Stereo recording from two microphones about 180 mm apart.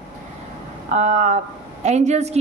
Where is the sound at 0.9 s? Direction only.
40° right (ahead or behind).